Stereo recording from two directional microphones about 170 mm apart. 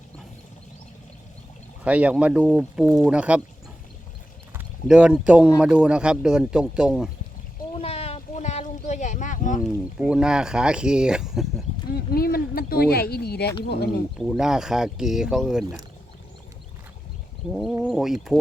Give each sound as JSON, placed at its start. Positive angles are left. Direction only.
{"t": 1.8, "sound": "speech", "side_deg": -10}
{"t": 4.5, "sound": "speech", "side_deg": -5}
{"t": 7.8, "sound": "boat", "side_deg": 35}
{"t": 9.6, "sound": "speech", "side_deg": -5}
{"t": 11.9, "sound": "speech", "side_deg": 60}
{"t": 14.3, "sound": "speech", "side_deg": -5}
{"t": 17.5, "sound": "speech", "side_deg": 0}